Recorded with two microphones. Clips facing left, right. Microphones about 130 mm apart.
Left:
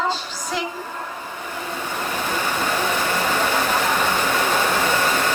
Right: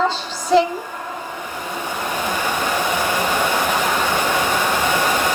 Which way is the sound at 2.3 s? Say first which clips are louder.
Right 1 dB; 15° right (ahead or behind).